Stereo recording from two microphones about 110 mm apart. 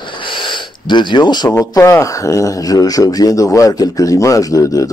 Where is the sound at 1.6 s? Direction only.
35° left (ahead or behind).